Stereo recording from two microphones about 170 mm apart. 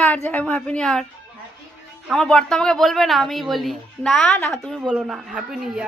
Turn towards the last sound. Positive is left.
turn(degrees=-5)  # may be behind; listen again after turning